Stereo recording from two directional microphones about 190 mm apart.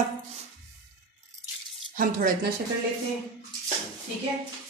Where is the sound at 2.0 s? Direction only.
45° right (ahead or behind).